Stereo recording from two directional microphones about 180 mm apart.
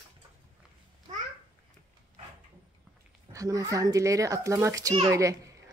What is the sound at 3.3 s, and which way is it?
A child's voice, 20° right (ahead or behind).